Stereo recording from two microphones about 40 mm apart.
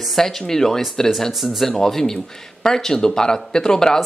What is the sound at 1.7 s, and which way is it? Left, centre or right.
Speech, centre.